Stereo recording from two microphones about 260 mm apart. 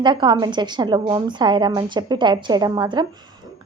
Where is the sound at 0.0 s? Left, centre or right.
Centre.